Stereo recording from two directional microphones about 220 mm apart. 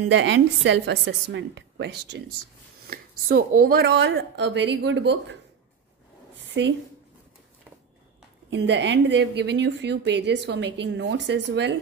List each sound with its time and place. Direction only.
0.1 s a woman's voice: 55° right (ahead or behind)
6.5 s a woman's voice: 55° right (ahead or behind)
8.5 s a woman's voice: 55° right (ahead or behind)